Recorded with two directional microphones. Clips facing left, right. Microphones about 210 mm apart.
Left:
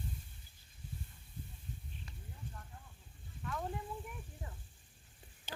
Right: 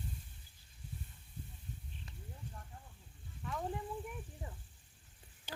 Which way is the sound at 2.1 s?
20° right (ahead or behind).